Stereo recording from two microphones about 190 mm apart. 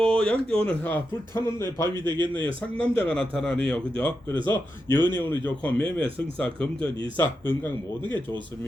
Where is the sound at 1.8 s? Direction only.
20° right (ahead or behind).